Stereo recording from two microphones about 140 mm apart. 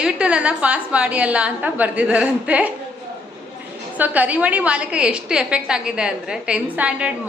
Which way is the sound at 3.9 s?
10° right (ahead or behind).